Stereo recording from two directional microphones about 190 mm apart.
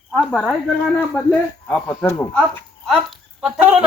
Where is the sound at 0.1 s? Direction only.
Centre (ahead or behind).